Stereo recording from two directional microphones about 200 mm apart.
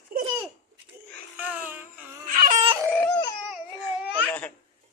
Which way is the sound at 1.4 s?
10° right (ahead or behind).